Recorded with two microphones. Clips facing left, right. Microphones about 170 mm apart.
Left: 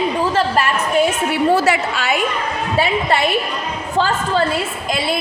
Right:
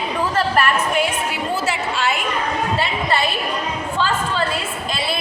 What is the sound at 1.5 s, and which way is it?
Speech, 70° left (ahead or behind).